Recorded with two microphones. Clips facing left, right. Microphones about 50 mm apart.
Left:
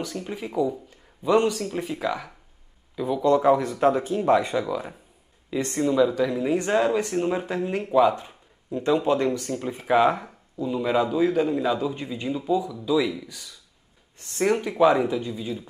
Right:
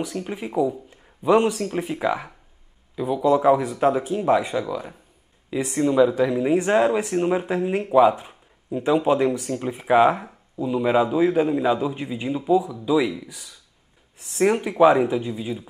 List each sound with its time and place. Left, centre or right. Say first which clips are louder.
0.0 s speech: right 3 dB; centre
3.0 s speech: right 1 dB; centre